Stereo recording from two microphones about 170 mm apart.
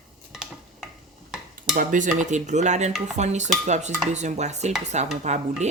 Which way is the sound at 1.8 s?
50° right (ahead or behind).